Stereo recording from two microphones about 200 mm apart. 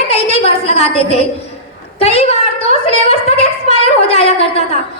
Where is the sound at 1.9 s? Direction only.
30° left (ahead or behind).